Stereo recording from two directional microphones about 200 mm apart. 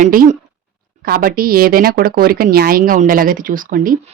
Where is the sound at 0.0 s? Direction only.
40° right (ahead or behind).